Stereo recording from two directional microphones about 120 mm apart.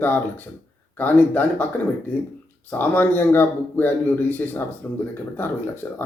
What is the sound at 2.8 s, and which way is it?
A man's voice, 15° left (ahead or behind).